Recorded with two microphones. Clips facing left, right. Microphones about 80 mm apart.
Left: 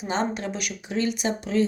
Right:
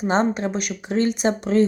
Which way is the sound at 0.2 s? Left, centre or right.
Right.